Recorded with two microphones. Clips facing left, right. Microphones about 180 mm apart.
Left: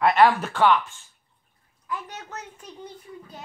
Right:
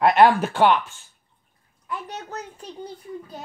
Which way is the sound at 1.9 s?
35° right (ahead or behind).